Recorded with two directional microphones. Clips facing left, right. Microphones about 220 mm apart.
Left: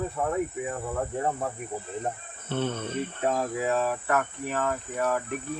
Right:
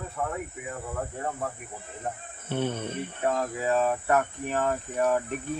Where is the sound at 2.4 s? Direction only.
10° right (ahead or behind).